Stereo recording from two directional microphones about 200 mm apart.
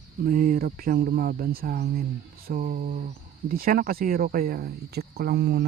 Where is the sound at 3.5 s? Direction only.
45° right (ahead or behind).